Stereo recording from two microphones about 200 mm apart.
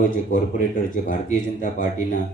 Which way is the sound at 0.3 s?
40° left (ahead or behind).